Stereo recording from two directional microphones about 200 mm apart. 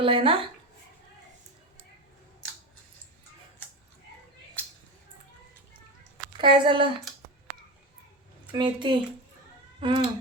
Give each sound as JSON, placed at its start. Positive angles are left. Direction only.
{"t": 0.0, "sound": "speech", "side_deg": -25}
{"t": 6.4, "sound": "speech", "side_deg": -25}
{"t": 8.5, "sound": "speech", "side_deg": -25}